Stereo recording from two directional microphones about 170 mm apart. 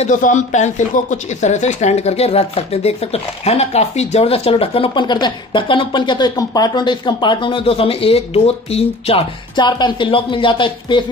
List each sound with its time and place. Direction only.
0.0 s speech: 50° left (ahead or behind); by 11.0 s 30° left (ahead or behind)